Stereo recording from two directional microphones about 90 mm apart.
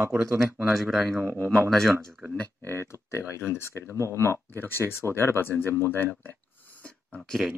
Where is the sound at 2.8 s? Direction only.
30° left (ahead or behind).